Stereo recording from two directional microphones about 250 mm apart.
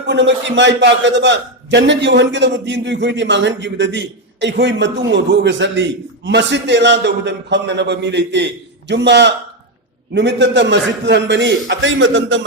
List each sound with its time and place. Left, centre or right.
0.1 s a man's voice: right